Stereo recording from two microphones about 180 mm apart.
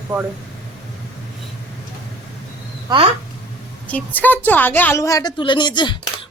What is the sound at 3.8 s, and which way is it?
A woman's voice, 10° left (ahead or behind).